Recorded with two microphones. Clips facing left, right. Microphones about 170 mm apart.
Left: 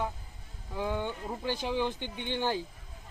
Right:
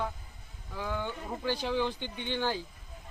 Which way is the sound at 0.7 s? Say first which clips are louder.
Left 3 dB; 15° left (ahead or behind).